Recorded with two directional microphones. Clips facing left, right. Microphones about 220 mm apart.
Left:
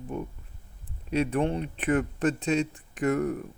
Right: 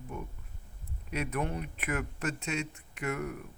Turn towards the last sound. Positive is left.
turn(degrees=35)  # may be behind; listen again after turning